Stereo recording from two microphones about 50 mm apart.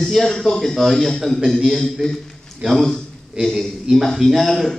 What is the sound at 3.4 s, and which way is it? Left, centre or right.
Speech, right.